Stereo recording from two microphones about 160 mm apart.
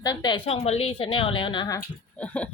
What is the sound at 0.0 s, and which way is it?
A woman's voice, 25° left (ahead or behind).